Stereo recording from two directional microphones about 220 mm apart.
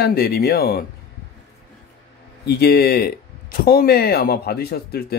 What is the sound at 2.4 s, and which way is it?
Speech, 45° left (ahead or behind).